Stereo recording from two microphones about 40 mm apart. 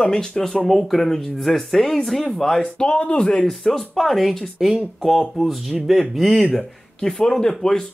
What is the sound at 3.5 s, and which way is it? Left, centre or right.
Speech, centre.